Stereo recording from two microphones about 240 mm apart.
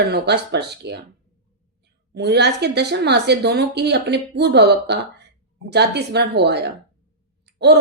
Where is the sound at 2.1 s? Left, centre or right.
Right.